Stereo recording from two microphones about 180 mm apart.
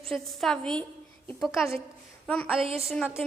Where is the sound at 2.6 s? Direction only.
30° right (ahead or behind).